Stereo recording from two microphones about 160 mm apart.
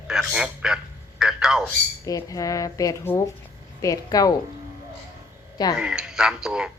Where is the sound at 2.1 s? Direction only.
20° left (ahead or behind).